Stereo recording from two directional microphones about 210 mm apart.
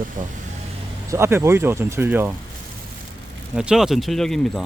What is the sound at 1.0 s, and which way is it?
Speech, 10° right (ahead or behind).